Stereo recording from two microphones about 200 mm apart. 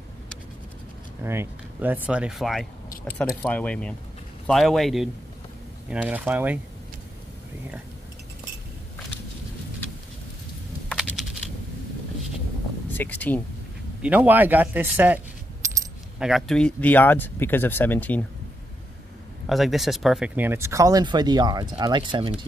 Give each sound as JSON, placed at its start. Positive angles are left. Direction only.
{"t": 1.2, "sound": "speech", "side_deg": -10}
{"t": 10.9, "sound": "computer keyboard", "side_deg": 5}
{"t": 12.9, "sound": "speech", "side_deg": 10}
{"t": 14.0, "sound": "speech", "side_deg": -10}
{"t": 16.2, "sound": "speech", "side_deg": 0}
{"t": 19.4, "sound": "speech", "side_deg": 0}